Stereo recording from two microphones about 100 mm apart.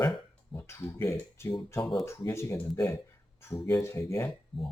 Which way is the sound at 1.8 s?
5° left (ahead or behind).